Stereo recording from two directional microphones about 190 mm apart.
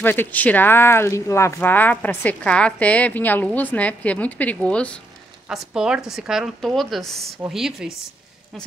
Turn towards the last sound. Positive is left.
turn(degrees=0)  # may be behind; listen again after turning